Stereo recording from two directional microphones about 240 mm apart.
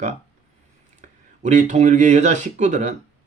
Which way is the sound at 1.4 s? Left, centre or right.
Right.